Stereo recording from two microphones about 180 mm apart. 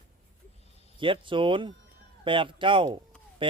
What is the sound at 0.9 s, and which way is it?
Speech, 30° right (ahead or behind).